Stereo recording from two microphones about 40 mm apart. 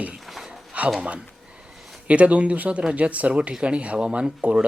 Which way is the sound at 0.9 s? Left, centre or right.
Right.